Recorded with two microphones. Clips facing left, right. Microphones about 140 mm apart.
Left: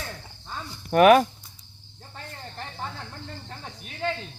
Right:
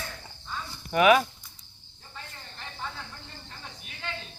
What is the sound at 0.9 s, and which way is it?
Speech, 50° left (ahead or behind).